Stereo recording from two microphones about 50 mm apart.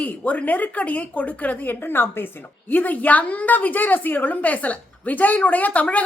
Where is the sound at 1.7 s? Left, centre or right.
Left.